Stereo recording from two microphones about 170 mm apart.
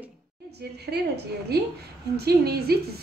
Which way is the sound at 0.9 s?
75° right (ahead or behind).